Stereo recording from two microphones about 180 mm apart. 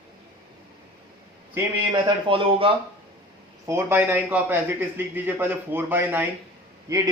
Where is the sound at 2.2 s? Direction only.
30° right (ahead or behind).